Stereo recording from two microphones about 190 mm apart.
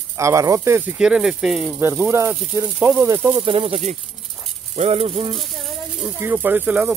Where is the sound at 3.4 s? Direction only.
30° right (ahead or behind).